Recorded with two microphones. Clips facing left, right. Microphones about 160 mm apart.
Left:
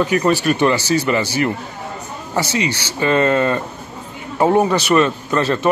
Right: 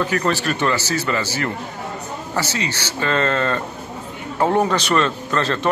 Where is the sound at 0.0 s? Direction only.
15° left (ahead or behind).